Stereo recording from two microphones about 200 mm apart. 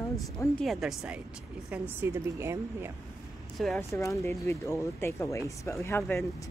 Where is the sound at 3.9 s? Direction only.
10° left (ahead or behind).